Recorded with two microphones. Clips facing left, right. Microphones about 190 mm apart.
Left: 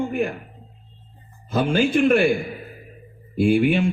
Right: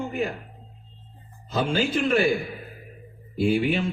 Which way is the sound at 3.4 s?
50° left (ahead or behind).